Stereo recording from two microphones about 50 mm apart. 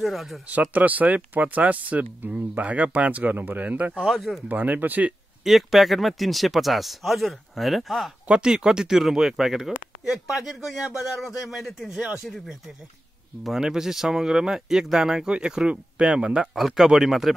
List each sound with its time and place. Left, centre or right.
0.0 s speech: centre
0.5 s speech: right
4.1 s speech: centre
4.5 s speech: right
5.4 s speech: centre
8.3 s speech: centre
13.6 s speech: centre
16.5 s speech: centre